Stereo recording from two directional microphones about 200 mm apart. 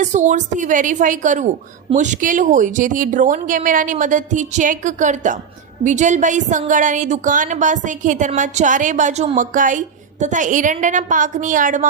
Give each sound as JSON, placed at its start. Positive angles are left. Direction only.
{"t": 0.0, "sound": "speech", "side_deg": -35}